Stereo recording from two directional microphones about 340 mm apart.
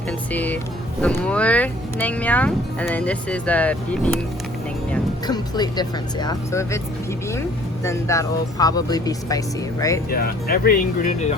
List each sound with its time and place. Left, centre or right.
0.1 s speech: centre
7.9 s speech: centre
10.1 s speech: left